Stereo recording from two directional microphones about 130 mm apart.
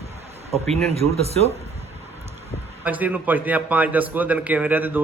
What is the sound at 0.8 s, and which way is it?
Speech, 55° right (ahead or behind).